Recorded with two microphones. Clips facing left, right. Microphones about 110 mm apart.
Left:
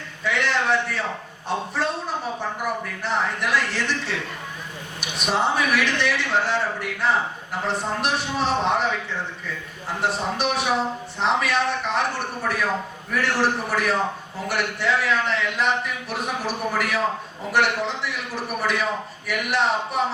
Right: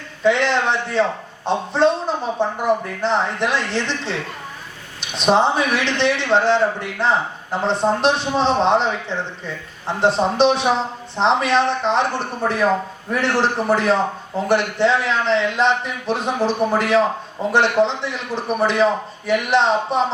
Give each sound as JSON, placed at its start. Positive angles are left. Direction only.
{"t": 0.3, "sound": "a woman's voice", "side_deg": -30}